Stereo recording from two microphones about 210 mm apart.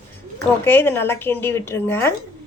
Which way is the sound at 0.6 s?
10° left (ahead or behind).